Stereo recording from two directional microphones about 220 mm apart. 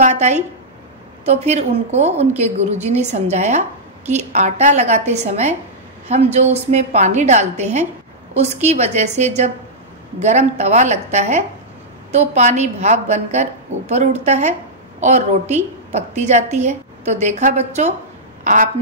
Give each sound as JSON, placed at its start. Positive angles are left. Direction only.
{"t": 0.0, "sound": "a woman's voice", "side_deg": -30}